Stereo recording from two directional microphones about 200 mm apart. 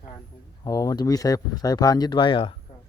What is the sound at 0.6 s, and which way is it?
Speech, 20° left (ahead or behind).